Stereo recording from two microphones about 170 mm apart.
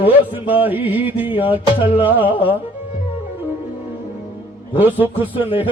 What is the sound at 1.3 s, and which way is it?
Music, 30° left (ahead or behind).